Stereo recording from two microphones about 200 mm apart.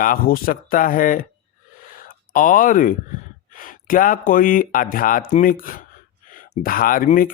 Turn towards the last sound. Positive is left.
turn(degrees=45)  # may be behind; listen again after turning